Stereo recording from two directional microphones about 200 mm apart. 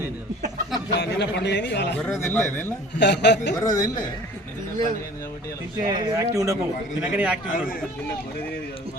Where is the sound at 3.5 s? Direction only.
20° left (ahead or behind).